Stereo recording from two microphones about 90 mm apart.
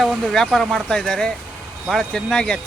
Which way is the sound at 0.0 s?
Centre (ahead or behind).